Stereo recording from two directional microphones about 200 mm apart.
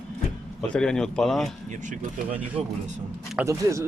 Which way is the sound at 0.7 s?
5° left (ahead or behind).